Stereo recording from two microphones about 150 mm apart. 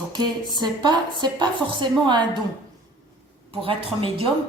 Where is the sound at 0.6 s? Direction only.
30° right (ahead or behind).